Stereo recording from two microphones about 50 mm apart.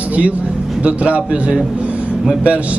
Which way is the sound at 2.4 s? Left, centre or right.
Right.